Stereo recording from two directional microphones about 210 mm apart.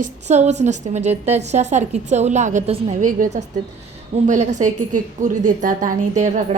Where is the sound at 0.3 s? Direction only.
35° right (ahead or behind).